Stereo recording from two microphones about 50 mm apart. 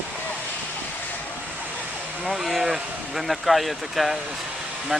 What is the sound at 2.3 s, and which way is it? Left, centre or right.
Speech, centre.